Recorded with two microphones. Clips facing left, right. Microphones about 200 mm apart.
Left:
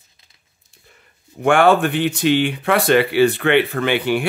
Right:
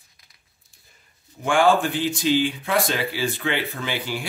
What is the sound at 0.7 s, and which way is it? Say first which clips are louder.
Speech: left 9 dB; 65° left (ahead or behind).